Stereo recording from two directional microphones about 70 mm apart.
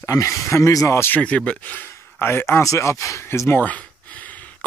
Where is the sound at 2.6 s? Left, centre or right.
Left.